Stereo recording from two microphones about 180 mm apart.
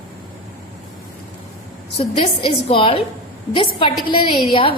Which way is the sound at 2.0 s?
30° left (ahead or behind).